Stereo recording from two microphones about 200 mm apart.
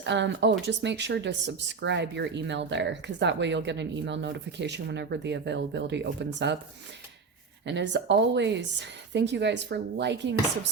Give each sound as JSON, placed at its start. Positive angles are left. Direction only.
{"t": 0.0, "sound": "speech", "side_deg": -60}
{"t": 7.6, "sound": "speech", "side_deg": -60}